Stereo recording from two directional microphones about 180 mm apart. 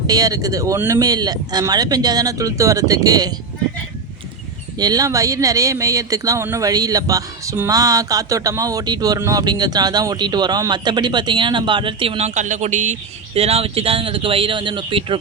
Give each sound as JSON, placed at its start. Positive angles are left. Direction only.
{"t": 0.1, "sound": "speech", "side_deg": -20}
{"t": 4.8, "sound": "speech", "side_deg": -20}